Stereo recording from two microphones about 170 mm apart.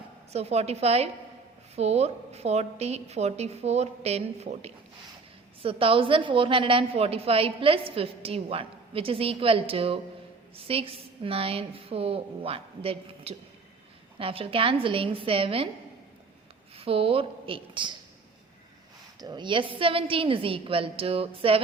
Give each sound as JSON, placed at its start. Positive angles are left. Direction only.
{"t": 0.3, "sound": "a woman's voice", "side_deg": -40}
{"t": 16.7, "sound": "a woman's voice", "side_deg": -35}
{"t": 19.2, "sound": "a woman's voice", "side_deg": -25}